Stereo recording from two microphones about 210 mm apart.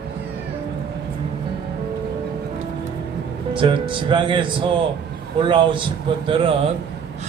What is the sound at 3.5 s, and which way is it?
Speech, 25° right (ahead or behind).